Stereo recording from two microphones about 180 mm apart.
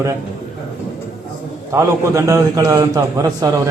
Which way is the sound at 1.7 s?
15° right (ahead or behind).